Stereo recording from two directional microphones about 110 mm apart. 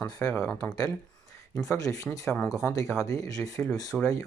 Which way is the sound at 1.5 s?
30° left (ahead or behind).